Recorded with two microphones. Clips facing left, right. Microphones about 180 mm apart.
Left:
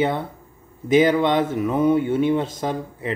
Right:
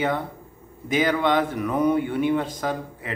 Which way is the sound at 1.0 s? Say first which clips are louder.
Left 3 dB; 25° left (ahead or behind).